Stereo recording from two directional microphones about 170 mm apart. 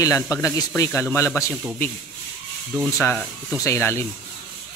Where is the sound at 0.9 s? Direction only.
5° left (ahead or behind).